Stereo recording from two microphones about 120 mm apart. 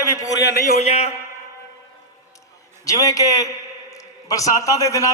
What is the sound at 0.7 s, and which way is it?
Speech, 65° left (ahead or behind).